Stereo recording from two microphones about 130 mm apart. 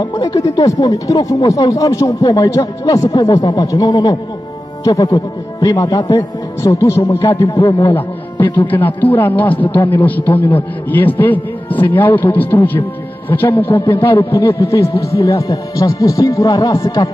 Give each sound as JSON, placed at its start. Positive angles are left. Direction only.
{"t": 0.0, "sound": "speech", "side_deg": 30}
{"t": 7.5, "sound": "a man's voice", "side_deg": 40}
{"t": 8.6, "sound": "a man's voice", "side_deg": 15}